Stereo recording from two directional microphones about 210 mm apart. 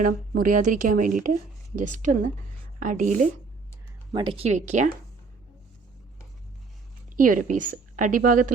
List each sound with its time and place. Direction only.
0.0 s speech: 40° right (ahead or behind)
4.1 s speech: 25° right (ahead or behind)
7.2 s speech: 40° right (ahead or behind)